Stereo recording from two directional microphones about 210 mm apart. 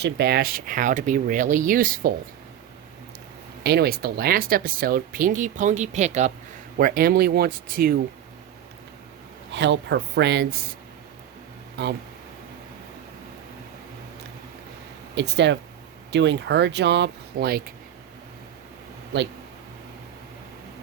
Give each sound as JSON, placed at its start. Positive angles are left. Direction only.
{"t": 0.0, "sound": "speech", "side_deg": -50}
{"t": 3.6, "sound": "speech", "side_deg": -50}
{"t": 6.7, "sound": "speech", "side_deg": -45}
{"t": 9.5, "sound": "speech", "side_deg": -55}
{"t": 11.8, "sound": "speech", "side_deg": -55}
{"t": 15.1, "sound": "speech", "side_deg": -55}
{"t": 19.1, "sound": "speech", "side_deg": -55}